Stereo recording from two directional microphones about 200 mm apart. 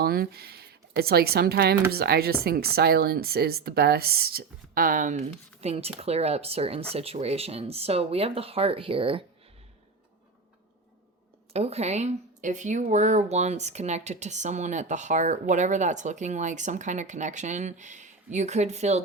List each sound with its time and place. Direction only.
0.0 s speech: 50° right (ahead or behind); by 9.2 s 25° right (ahead or behind)
11.5 s speech: 30° right (ahead or behind)